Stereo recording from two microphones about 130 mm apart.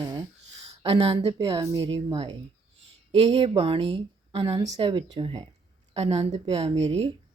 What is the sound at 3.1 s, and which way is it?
Speech, 45° right (ahead or behind).